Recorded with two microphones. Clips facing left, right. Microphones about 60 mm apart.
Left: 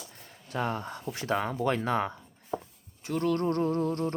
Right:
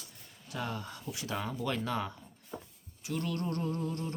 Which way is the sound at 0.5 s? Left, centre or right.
Left.